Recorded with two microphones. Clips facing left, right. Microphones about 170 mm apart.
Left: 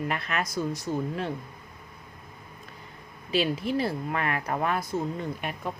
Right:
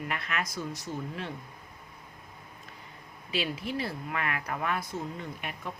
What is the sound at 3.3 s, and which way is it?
A woman's voice, 40° left (ahead or behind).